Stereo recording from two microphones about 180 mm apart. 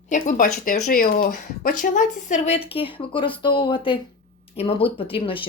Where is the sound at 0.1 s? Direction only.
45° left (ahead or behind).